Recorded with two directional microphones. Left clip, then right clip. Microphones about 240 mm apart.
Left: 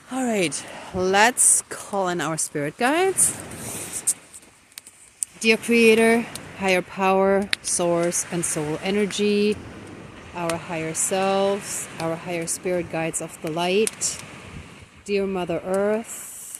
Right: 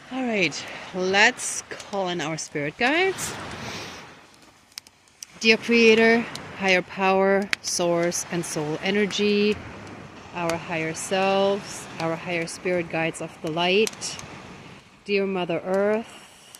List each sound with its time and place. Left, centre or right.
0.1 s speech: centre
5.4 s speech: centre
11.6 s speech: right
12.0 s speech: centre
15.0 s speech: centre